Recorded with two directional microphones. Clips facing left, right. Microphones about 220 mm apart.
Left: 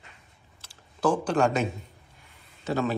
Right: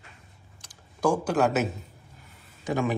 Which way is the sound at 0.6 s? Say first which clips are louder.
Even; 10° right (ahead or behind).